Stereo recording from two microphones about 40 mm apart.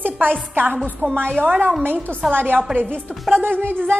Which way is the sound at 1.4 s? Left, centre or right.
Right.